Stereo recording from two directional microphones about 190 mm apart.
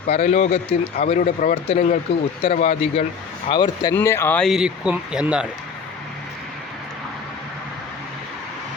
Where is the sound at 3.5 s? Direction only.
20° left (ahead or behind); by 5.5 s 5° right (ahead or behind).